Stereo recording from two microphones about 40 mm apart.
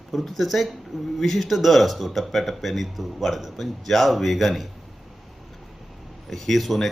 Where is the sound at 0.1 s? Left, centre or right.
Centre.